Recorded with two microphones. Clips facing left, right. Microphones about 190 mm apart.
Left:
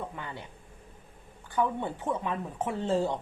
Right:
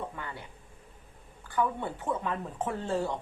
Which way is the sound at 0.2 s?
20° left (ahead or behind).